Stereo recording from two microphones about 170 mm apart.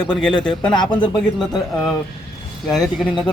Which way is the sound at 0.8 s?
30° left (ahead or behind).